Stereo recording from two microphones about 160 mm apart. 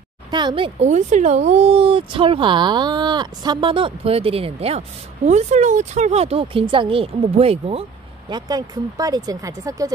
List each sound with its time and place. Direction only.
0.3 s speech: 30° right (ahead or behind)
0.7 s speech: 45° right (ahead or behind)
8.3 s speech: 25° right (ahead or behind)